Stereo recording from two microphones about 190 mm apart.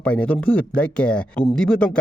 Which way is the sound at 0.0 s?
5° left (ahead or behind).